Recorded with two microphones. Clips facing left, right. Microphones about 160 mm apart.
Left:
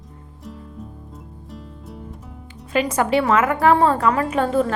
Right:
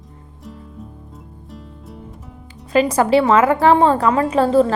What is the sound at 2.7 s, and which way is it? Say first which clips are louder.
A woman's voice: right 5 dB; 35° right (ahead or behind).